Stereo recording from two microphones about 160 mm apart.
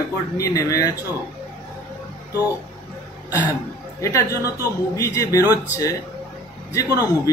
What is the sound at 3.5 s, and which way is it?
Speech, 20° left (ahead or behind).